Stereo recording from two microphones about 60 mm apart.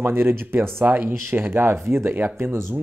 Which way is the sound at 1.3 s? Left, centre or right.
Right.